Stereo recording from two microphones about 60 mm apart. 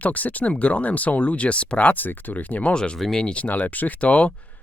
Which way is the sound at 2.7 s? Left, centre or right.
Centre.